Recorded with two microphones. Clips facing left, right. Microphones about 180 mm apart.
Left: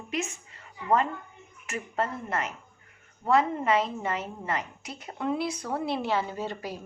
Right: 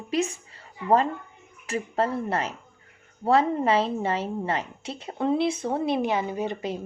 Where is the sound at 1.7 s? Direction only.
30° right (ahead or behind).